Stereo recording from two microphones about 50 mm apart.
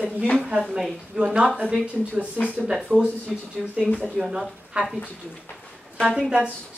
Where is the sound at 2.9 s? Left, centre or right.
Right.